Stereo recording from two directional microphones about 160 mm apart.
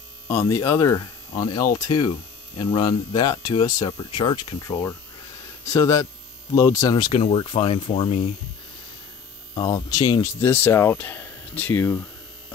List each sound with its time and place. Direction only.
0.3 s speech: 15° left (ahead or behind)
7.1 s speech: 35° left (ahead or behind)
9.6 s speech: 20° left (ahead or behind)